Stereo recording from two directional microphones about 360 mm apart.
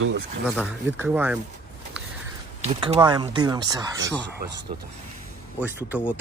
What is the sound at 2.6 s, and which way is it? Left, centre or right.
Speech, centre.